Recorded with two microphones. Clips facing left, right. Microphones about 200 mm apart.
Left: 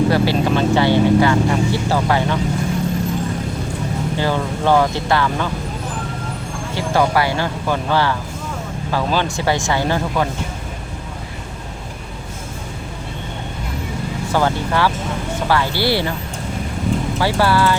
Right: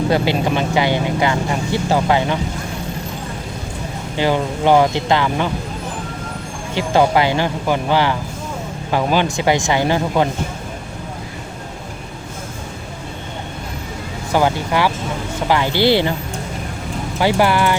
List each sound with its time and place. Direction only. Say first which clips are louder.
0.1 s speech: left 1 dB; 15° right (ahead or behind)
4.2 s speech: right 4 dB; 15° right (ahead or behind)
6.7 s speech: right 2 dB; 20° right (ahead or behind)
14.3 s speech: right 2 dB; 15° right (ahead or behind)
17.2 s speech: right 3 dB; 15° right (ahead or behind)